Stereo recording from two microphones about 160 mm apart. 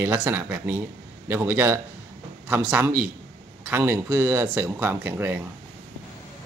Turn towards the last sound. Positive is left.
turn(degrees=-10)  # may be behind; listen again after turning